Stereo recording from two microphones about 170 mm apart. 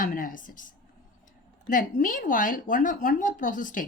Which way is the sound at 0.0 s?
50° left (ahead or behind).